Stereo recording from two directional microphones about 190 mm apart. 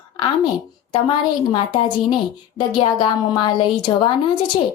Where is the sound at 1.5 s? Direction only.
25° left (ahead or behind).